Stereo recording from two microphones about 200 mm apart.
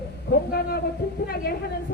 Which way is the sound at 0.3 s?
60° left (ahead or behind).